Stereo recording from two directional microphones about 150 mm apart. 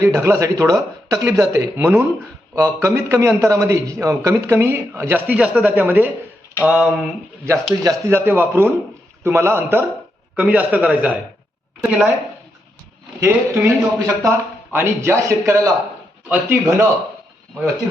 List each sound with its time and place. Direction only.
0.0 s a man's voice: 20° right (ahead or behind)
6.7 s a sound: 5° right (ahead or behind)
7.4 s a man's voice: 20° right (ahead or behind)
13.1 s a man's voice: 20° right (ahead or behind)